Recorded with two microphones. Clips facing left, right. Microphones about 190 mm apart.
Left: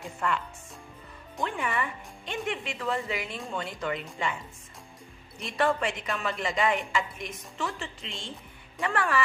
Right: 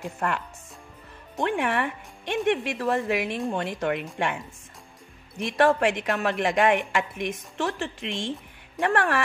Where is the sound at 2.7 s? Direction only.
55° right (ahead or behind).